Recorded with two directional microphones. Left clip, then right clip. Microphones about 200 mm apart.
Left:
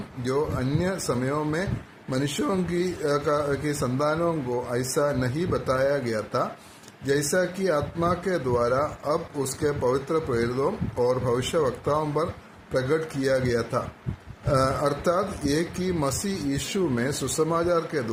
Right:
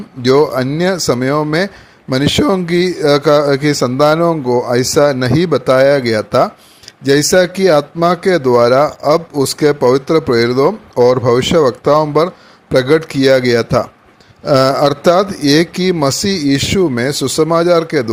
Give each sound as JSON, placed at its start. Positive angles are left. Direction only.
{"t": 0.3, "sound": "speech", "side_deg": -40}